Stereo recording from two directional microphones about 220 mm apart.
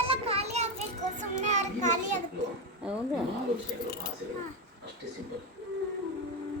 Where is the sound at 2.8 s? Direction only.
5° right (ahead or behind).